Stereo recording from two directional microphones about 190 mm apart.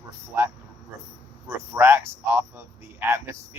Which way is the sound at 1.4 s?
10° right (ahead or behind).